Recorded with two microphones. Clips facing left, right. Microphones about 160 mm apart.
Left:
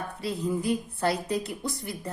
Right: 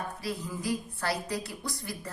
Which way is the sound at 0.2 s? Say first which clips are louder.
Left 6 dB; 25° left (ahead or behind).